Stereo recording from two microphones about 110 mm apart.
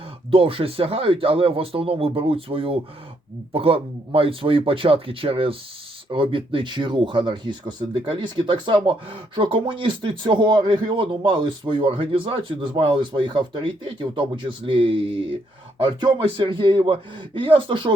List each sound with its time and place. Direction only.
0.3 s a man's voice: 55° right (ahead or behind)